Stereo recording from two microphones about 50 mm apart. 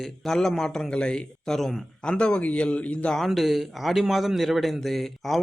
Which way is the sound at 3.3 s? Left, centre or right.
Centre.